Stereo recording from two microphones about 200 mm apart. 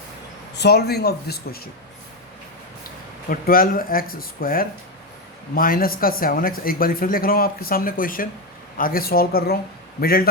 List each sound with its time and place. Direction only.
0.5 s speech: 55° left (ahead or behind)
3.2 s speech: 45° left (ahead or behind)